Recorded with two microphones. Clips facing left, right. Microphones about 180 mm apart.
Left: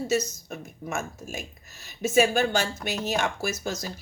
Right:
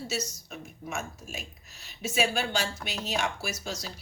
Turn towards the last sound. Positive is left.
turn(degrees=45)  # may be behind; listen again after turning